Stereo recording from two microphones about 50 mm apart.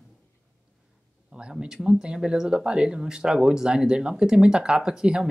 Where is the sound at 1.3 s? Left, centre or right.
Centre.